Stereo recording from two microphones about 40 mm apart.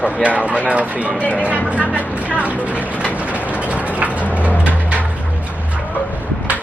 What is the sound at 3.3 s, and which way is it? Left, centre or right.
Mechanisms, right.